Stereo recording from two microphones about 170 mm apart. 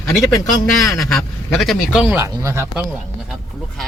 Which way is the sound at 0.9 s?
Centre (ahead or behind).